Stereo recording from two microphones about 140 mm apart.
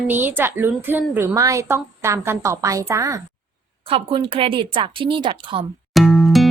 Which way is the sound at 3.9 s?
40° right (ahead or behind).